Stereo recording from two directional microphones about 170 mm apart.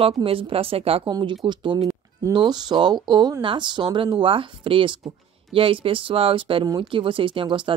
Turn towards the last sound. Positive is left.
turn(degrees=-30)  # may be behind; listen again after turning